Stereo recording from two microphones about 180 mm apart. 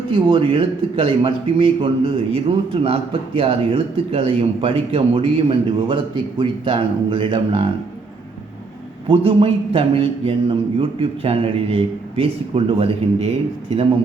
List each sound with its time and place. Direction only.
0.1 s a man's voice: 30° right (ahead or behind)
9.0 s a man's voice: 30° right (ahead or behind)